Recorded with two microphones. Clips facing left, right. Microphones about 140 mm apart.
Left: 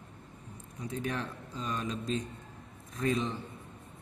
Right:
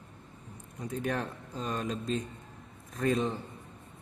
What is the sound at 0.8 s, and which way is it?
A man's voice, 45° right (ahead or behind).